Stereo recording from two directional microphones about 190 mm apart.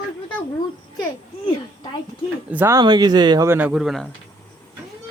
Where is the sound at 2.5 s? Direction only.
10° right (ahead or behind).